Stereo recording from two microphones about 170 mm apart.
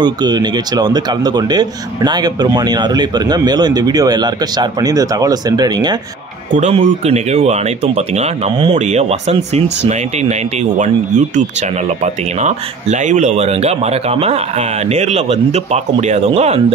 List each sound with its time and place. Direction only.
0.0 s speech: 25° right (ahead or behind)
6.5 s speech: 45° right (ahead or behind)